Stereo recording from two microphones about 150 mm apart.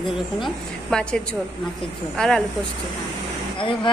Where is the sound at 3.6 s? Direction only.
35° left (ahead or behind).